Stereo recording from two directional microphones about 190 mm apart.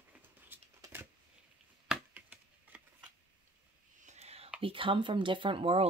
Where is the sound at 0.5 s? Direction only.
10° right (ahead or behind).